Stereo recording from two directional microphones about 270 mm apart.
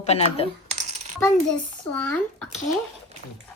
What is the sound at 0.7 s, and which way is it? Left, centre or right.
Coin, right.